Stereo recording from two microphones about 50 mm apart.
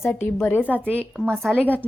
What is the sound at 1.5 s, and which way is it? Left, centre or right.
Speech, right.